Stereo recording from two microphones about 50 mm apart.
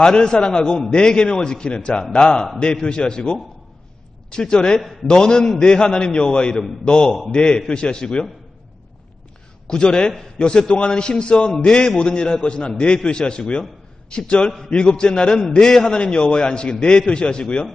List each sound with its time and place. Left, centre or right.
0.0 s a man's voice: centre
9.6 s a man's voice: centre